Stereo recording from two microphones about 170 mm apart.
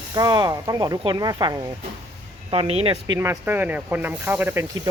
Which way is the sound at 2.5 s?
35° right (ahead or behind).